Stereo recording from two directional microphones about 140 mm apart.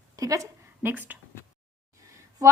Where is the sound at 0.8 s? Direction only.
15° right (ahead or behind).